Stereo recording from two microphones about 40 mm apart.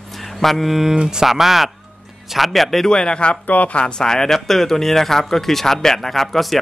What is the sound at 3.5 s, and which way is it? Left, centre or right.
Speech, left.